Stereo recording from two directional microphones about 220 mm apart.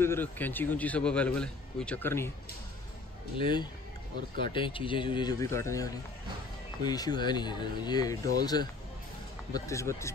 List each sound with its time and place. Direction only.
0.0 s a man's voice: 10° left (ahead or behind)
3.3 s a man's voice: 20° left (ahead or behind)